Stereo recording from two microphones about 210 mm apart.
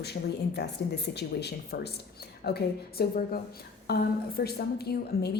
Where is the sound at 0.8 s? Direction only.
50° left (ahead or behind).